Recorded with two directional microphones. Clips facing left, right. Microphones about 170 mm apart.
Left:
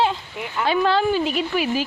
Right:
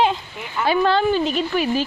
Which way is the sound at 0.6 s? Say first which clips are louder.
Right 1 dB; centre (ahead or behind).